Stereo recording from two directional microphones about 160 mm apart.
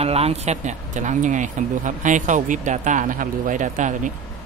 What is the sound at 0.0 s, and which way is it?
A man's voice, 40° right (ahead or behind).